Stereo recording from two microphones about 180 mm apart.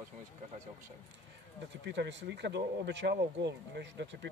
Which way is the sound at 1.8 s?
75° right (ahead or behind).